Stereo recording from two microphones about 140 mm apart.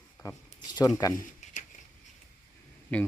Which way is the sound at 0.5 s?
30° left (ahead or behind).